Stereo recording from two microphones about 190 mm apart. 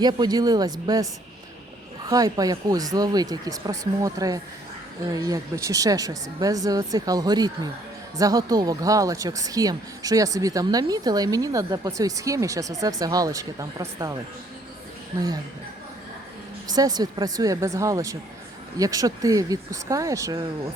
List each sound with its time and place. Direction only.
0.0 s speech: 20° right (ahead or behind)
2.0 s a woman's voice: 20° right (ahead or behind)
16.6 s a woman's voice: 20° right (ahead or behind)